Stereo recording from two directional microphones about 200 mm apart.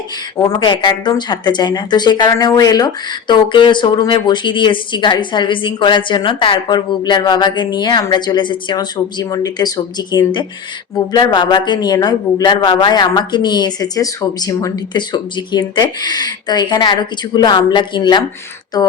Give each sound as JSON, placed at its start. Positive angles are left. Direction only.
{"t": 0.3, "sound": "speech", "side_deg": 20}